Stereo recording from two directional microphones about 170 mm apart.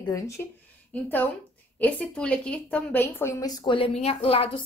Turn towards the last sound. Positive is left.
turn(degrees=35)  # may be behind; listen again after turning